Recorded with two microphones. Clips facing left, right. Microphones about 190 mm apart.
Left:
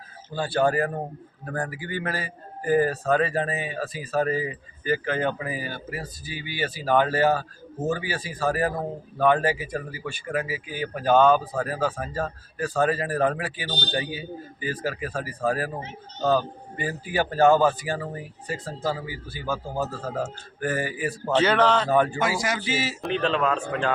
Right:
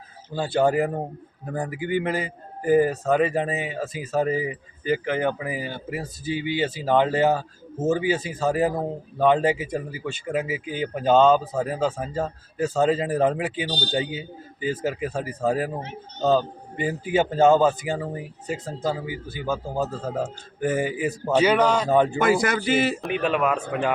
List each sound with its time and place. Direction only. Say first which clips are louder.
0.3 s a man's voice: right 2 dB; 20° right (ahead or behind)
22.2 s speech: right 5 dB; 55° right (ahead or behind)
23.1 s speech: left 1 dB; 10° right (ahead or behind)